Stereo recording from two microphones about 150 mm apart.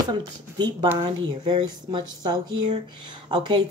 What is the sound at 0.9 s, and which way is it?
Speech, 30° right (ahead or behind).